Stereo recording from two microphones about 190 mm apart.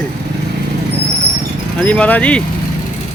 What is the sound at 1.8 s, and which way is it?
Speech, 10° left (ahead or behind).